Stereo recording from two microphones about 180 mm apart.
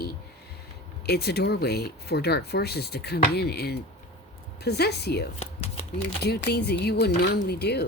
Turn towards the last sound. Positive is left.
turn(degrees=65)  # may be behind; listen again after turning